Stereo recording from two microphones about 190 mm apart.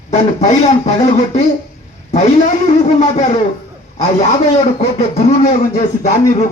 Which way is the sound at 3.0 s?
30° left (ahead or behind).